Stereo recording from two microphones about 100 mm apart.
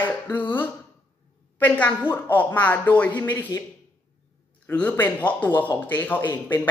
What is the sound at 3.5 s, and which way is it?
Speech, 40° left (ahead or behind).